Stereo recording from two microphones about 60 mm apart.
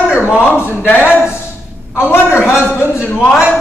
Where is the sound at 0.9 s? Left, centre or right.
Left.